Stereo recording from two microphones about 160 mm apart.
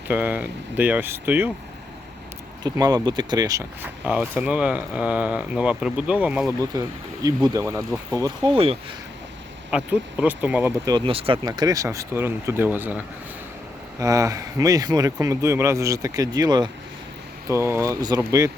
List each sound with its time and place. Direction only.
0.1 s speech: 10° right (ahead or behind)
2.6 s speech: 25° right (ahead or behind); by 6.5 s 5° right (ahead or behind)
6.6 s speech: 20° right (ahead or behind)
8.5 s speech: 35° right (ahead or behind)
9.6 s speech: 10° right (ahead or behind)
10.8 s speech: 30° right (ahead or behind); by 13.0 s 10° right (ahead or behind)
14.0 s speech: 20° right (ahead or behind)